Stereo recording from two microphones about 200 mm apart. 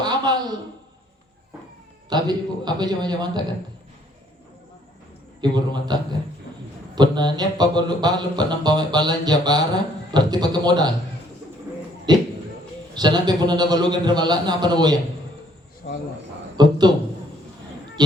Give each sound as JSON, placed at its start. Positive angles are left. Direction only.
{"t": 0.0, "sound": "a sound", "side_deg": -20}
{"t": 2.0, "sound": "speech", "side_deg": -20}
{"t": 5.4, "sound": "speech", "side_deg": -20}
{"t": 12.1, "sound": "speech", "side_deg": -20}
{"t": 15.8, "sound": "speech", "side_deg": 50}
{"t": 16.6, "sound": "speech", "side_deg": -20}